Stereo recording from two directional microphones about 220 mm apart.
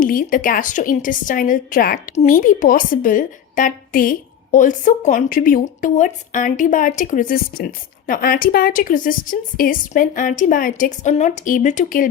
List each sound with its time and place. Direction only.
0.0 s a woman's voice: 40° left (ahead or behind)